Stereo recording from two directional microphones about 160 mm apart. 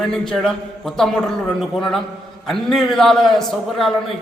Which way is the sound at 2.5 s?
Centre (ahead or behind).